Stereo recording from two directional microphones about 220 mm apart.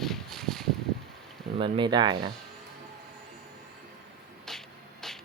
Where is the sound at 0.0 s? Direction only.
Centre (ahead or behind).